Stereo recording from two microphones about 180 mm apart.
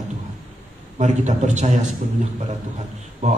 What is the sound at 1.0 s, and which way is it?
Speech, 40° right (ahead or behind).